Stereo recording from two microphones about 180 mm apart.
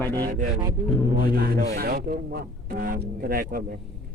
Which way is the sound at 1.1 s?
55° right (ahead or behind).